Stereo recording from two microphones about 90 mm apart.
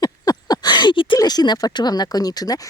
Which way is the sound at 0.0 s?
45° left (ahead or behind).